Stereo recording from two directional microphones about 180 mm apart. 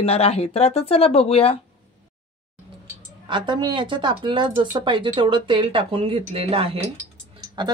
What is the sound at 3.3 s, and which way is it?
Speech, 25° right (ahead or behind).